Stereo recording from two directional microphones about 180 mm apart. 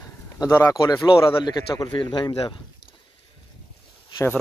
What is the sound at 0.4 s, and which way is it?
A man's voice, 20° left (ahead or behind).